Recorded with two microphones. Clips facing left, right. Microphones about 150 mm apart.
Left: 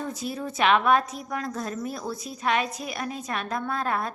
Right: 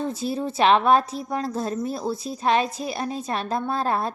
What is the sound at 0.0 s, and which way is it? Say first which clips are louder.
A woman's voice: right 5 dB; 30° right (ahead or behind).